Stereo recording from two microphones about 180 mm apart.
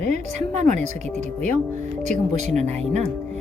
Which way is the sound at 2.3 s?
40° right (ahead or behind).